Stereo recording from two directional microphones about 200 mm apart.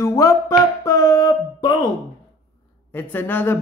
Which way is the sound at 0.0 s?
15° left (ahead or behind).